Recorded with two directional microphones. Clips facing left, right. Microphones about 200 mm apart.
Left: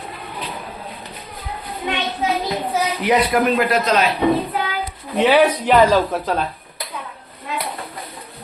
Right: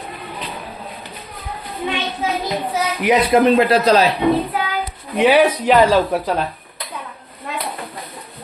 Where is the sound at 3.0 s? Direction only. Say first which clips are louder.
Right 4 dB; 20° right (ahead or behind).